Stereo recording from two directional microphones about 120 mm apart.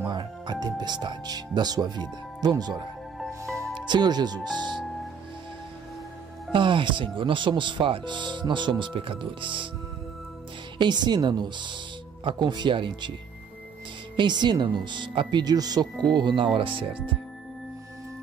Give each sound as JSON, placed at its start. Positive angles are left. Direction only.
{"t": 0.1, "sound": "speech", "side_deg": -35}
{"t": 3.2, "sound": "music", "side_deg": 5}
{"t": 3.7, "sound": "speech", "side_deg": -40}
{"t": 6.5, "sound": "speech", "side_deg": -45}
{"t": 10.8, "sound": "speech", "side_deg": -40}
{"t": 14.1, "sound": "speech", "side_deg": -40}